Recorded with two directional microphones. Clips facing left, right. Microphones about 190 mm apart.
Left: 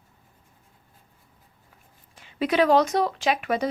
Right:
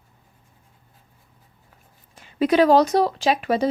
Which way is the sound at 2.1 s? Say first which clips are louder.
Right 4 dB; 40° right (ahead or behind).